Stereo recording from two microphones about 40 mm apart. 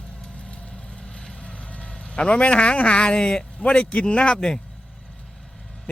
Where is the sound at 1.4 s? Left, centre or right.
Left.